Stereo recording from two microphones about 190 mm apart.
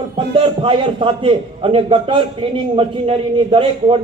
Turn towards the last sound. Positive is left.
turn(degrees=-25)  # may be behind; listen again after turning